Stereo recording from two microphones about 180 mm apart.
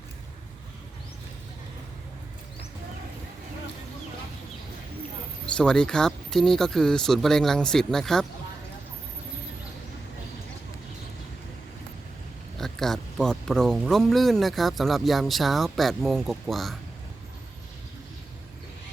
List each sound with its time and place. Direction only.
5.5 s speech: 5° left (ahead or behind)
12.5 s speech: centre (ahead or behind)